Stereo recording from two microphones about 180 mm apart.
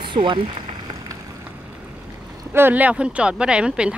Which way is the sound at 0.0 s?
25° right (ahead or behind).